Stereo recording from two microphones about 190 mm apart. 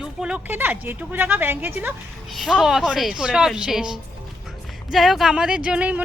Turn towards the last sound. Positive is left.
turn(degrees=-5)  # may be behind; listen again after turning